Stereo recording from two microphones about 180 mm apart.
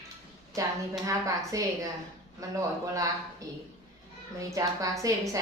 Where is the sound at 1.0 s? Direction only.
15° right (ahead or behind).